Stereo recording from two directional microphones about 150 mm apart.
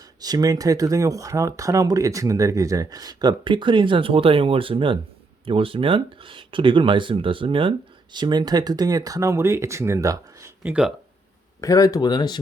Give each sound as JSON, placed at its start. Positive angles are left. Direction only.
{"t": 0.2, "sound": "speech", "side_deg": -25}
{"t": 10.7, "sound": "speech", "side_deg": -5}
{"t": 11.6, "sound": "speech", "side_deg": 20}